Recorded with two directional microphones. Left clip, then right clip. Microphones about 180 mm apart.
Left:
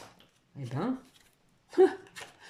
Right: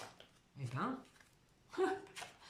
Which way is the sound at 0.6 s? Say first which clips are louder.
Left 7 dB; 40° left (ahead or behind).